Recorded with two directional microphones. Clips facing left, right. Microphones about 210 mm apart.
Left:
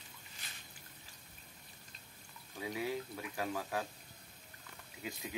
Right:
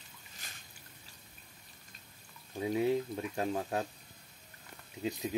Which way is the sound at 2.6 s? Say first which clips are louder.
Right 8 dB; 35° right (ahead or behind).